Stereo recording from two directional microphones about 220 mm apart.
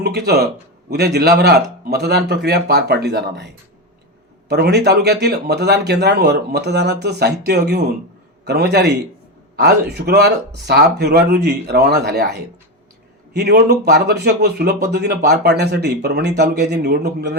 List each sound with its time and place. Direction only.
0.0 s speech: 45° right (ahead or behind)